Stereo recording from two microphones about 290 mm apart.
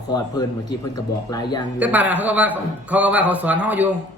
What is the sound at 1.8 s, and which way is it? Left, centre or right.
A man's voice, centre.